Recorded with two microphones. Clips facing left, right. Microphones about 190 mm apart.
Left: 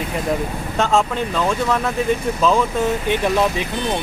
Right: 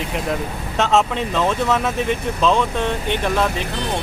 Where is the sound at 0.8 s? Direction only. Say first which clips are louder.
Even; centre (ahead or behind).